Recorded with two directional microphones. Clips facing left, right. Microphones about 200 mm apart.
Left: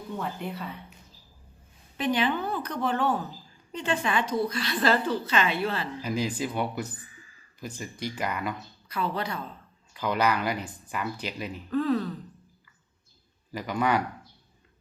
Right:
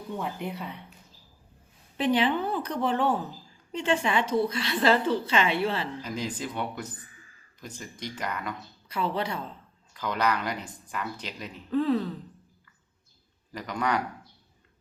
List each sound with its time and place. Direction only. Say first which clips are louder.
0.2 s speech: even; 15° right (ahead or behind)
2.0 s a woman's voice: right 2 dB; 30° right (ahead or behind)
6.0 s speech: left 4 dB; 10° left (ahead or behind)
8.9 s a woman's voice: right 1 dB; 25° right (ahead or behind)
9.9 s speech: left 2 dB; 10° left (ahead or behind)
11.7 s a woman's voice: right 1 dB; 25° right (ahead or behind)
13.5 s speech: left 3 dB; 5° left (ahead or behind)